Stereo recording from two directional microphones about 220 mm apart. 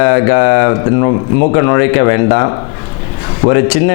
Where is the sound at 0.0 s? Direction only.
20° left (ahead or behind).